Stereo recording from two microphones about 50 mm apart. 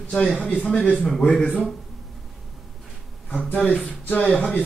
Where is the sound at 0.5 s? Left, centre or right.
Left.